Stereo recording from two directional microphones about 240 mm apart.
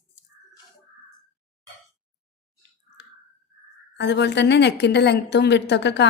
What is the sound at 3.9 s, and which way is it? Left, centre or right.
A woman's voice, left.